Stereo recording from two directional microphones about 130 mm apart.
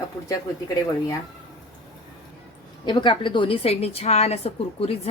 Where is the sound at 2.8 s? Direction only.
35° left (ahead or behind).